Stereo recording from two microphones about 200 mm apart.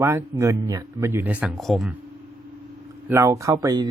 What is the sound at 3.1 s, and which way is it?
Speech, 15° right (ahead or behind).